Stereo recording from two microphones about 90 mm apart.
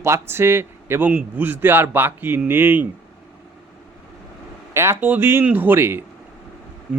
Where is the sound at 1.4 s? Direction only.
25° right (ahead or behind).